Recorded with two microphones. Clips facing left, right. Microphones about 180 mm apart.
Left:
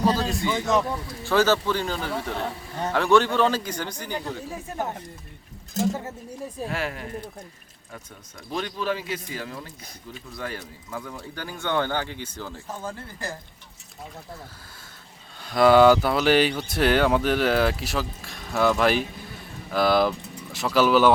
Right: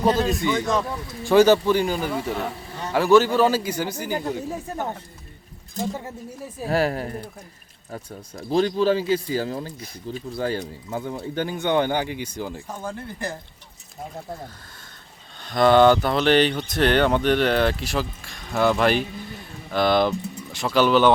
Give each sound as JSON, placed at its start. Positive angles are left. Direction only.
{"t": 0.0, "sound": "speech", "side_deg": -20}
{"t": 0.5, "sound": "speech", "side_deg": 20}
{"t": 1.2, "sound": "speech", "side_deg": -15}
{"t": 6.7, "sound": "speech", "side_deg": -40}
{"t": 15.4, "sound": "speech", "side_deg": 5}